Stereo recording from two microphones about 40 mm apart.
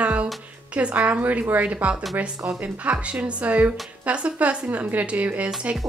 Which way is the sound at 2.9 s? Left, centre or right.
Right.